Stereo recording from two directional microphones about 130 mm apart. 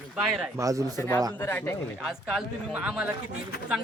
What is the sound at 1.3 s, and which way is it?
Speech, 15° left (ahead or behind).